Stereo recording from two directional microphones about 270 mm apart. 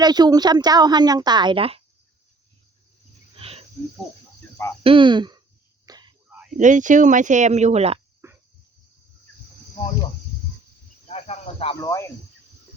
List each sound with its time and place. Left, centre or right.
0.0 s a woman's voice: centre
3.3 s cricket: right
4.8 s speech: centre
5.8 s a sound: centre
6.6 s speech: right
8.2 s cricket: centre
11.1 s speech: left